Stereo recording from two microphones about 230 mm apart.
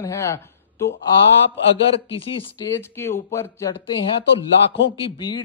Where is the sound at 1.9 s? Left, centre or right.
Left.